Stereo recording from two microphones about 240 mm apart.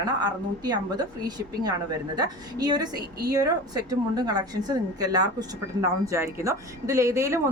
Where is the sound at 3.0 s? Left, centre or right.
Right.